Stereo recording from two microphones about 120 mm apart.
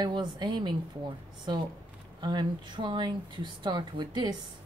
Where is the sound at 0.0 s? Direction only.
40° right (ahead or behind).